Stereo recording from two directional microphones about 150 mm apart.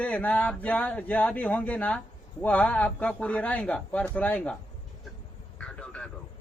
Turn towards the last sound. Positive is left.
turn(degrees=5)  # may be behind; listen again after turning